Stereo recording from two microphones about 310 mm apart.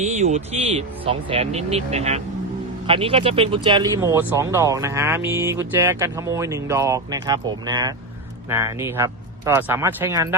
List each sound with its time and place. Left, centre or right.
0.0 s speech: right